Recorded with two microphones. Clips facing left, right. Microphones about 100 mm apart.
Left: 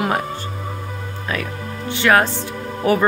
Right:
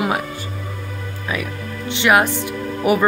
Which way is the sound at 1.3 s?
15° right (ahead or behind).